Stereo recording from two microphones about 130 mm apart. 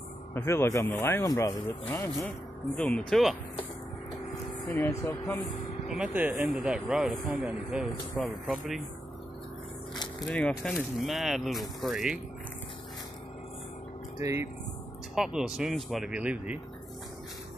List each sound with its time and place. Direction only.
0.3 s speech: 20° left (ahead or behind)
1.2 s speech: 25° left (ahead or behind)
2.2 s speech: 10° left (ahead or behind)
4.6 s speech: 20° left (ahead or behind)
5.9 s speech: 5° right (ahead or behind)
10.2 s speech: 10° left (ahead or behind)
14.2 s speech: 20° right (ahead or behind)
15.1 s speech: 5° right (ahead or behind)